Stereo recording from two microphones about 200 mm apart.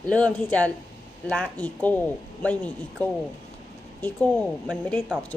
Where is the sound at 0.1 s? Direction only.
5° left (ahead or behind).